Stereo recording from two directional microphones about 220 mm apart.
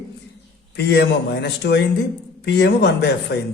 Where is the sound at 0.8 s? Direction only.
50° left (ahead or behind).